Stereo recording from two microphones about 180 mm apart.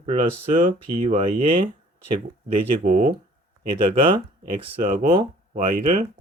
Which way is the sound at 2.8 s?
45° right (ahead or behind).